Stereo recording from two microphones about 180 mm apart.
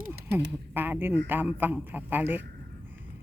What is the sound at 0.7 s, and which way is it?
A man's voice, 10° right (ahead or behind).